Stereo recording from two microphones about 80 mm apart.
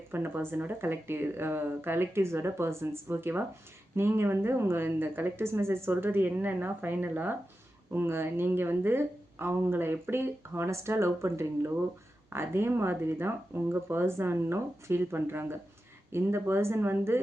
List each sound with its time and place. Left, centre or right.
0.1 s speech: right